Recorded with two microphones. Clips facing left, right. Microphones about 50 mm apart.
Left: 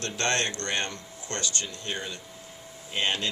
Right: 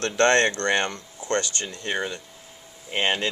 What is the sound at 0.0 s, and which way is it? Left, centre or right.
Speech, right.